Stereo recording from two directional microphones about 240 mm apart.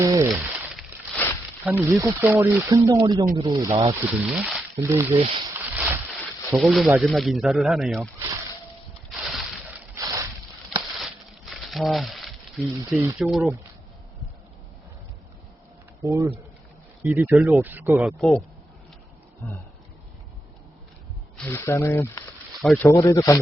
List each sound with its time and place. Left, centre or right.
0.0 s a sound: centre
1.6 s speech: centre
4.0 s speech: centre
4.8 s speech: centre
5.7 s vehicle: centre
6.6 s speech: centre
9.0 s a sound: centre
9.9 s boat: centre
10.9 s crumpling: centre
12.9 s speech: centre
16.0 s speech: centre
21.3 s speech: centre